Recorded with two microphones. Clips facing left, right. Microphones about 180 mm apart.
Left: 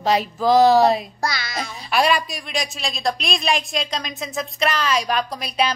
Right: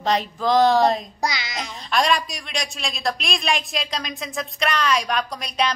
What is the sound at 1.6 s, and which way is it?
A woman's voice, 5° left (ahead or behind).